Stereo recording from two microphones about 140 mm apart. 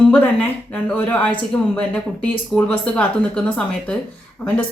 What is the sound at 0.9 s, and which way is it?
Speech, 10° left (ahead or behind).